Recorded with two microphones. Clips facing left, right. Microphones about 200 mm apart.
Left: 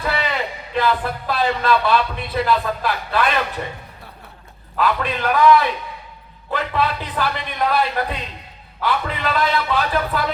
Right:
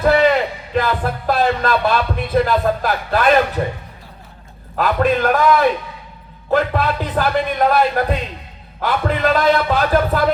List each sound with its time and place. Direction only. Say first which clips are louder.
0.0 s speech: right 10 dB; 45° right (ahead or behind)
4.8 s speech: right 5 dB; 45° right (ahead or behind)